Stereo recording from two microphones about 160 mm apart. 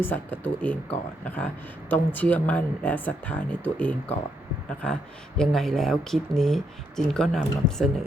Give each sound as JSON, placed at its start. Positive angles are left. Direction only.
{"t": 0.0, "sound": "speech", "side_deg": 10}
{"t": 5.4, "sound": "speech", "side_deg": 0}